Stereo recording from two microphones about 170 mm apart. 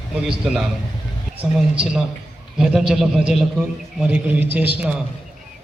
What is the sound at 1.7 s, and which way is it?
A man's voice, 5° right (ahead or behind).